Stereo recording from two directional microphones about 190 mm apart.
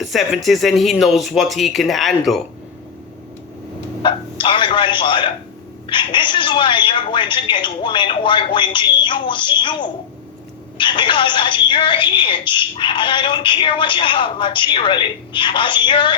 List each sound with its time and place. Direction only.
0.0 s speech: centre (ahead or behind)
4.0 s a man's voice: 25° left (ahead or behind)